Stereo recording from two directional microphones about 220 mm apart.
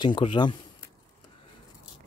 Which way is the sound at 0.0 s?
20° left (ahead or behind).